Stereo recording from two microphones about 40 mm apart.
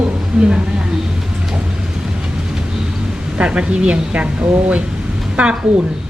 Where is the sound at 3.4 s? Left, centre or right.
Right.